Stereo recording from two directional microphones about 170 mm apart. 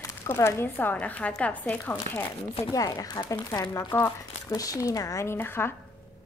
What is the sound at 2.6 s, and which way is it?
Speech, 20° left (ahead or behind).